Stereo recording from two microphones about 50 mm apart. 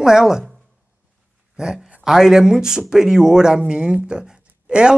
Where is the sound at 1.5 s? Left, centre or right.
Centre.